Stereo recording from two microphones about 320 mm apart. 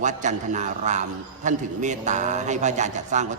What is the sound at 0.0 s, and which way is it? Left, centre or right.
A man's voice, right.